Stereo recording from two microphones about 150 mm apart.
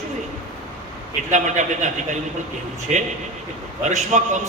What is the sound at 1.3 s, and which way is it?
A man's voice, 55° right (ahead or behind).